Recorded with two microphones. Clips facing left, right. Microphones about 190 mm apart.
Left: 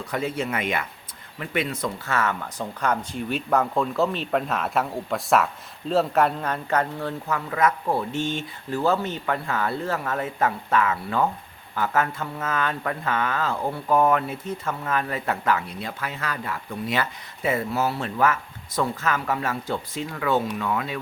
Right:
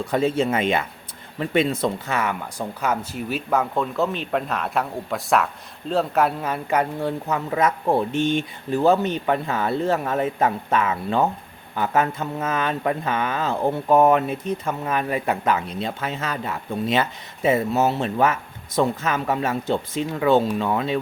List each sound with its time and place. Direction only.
0.1 s speech: 25° right (ahead or behind)
2.1 s speech: 10° right (ahead or behind)